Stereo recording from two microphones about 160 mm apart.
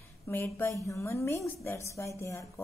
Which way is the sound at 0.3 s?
15° left (ahead or behind).